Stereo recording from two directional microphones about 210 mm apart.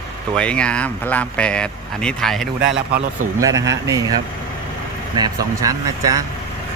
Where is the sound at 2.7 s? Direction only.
50° right (ahead or behind).